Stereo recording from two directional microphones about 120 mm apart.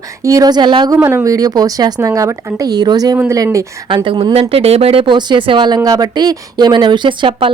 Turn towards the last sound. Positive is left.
turn(degrees=-45)  # may be behind; listen again after turning